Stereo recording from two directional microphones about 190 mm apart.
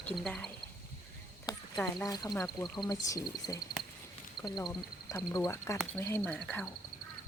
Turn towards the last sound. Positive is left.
turn(degrees=5)  # may be behind; listen again after turning